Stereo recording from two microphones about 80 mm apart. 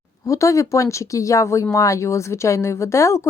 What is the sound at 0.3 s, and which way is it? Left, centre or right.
Speech, left.